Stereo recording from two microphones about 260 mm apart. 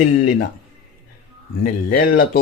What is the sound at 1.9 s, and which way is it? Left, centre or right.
Speech, left.